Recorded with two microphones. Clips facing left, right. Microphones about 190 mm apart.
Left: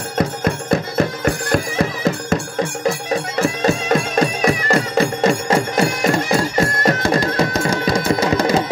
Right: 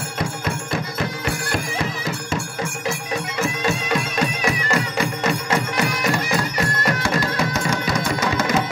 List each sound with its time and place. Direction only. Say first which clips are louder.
0.7 s music: left 7 dB; 45° left (ahead or behind)
3.3 s music: left 5 dB; 35° left (ahead or behind)